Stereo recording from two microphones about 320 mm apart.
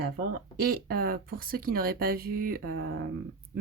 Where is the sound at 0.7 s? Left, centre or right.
Right.